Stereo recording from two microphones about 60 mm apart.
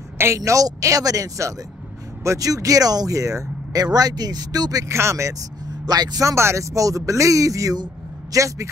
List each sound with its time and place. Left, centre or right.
0.4 s speech: right
4.8 s speech: right
5.9 s speech: right
6.3 s speech: right